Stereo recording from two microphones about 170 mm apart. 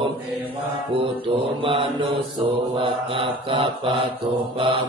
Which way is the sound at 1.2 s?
30° right (ahead or behind).